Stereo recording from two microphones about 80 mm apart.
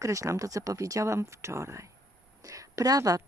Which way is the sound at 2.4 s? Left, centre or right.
Right.